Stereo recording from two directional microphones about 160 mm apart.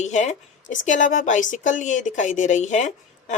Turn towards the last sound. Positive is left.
turn(degrees=50)  # may be behind; listen again after turning